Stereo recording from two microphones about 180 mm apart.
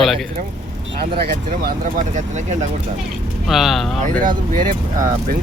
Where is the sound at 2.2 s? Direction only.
40° right (ahead or behind).